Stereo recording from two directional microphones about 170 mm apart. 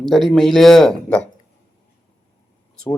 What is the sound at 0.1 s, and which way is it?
Speech, centre (ahead or behind).